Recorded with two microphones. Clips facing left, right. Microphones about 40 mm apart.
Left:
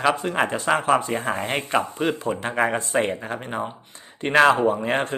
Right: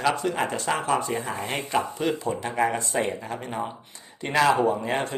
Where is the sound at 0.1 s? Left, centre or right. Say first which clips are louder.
Left 3 dB; left.